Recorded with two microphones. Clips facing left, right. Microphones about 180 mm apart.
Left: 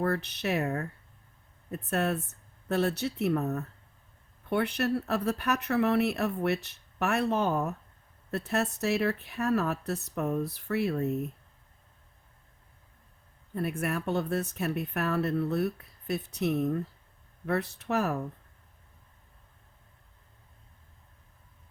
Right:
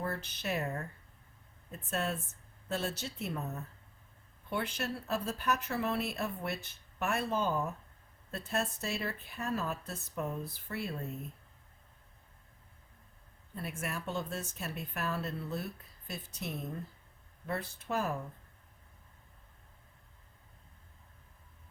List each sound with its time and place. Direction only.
0.0 s speech: 65° left (ahead or behind)
13.5 s speech: 60° left (ahead or behind)